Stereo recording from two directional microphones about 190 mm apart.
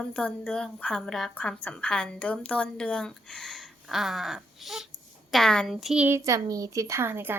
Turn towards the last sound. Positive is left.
turn(degrees=-10)  # may be behind; listen again after turning